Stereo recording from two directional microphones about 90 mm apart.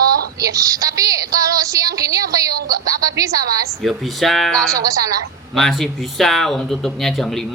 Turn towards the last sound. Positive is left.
turn(degrees=5)  # may be behind; listen again after turning